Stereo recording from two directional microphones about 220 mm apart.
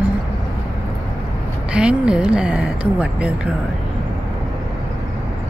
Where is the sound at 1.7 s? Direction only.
5° right (ahead or behind).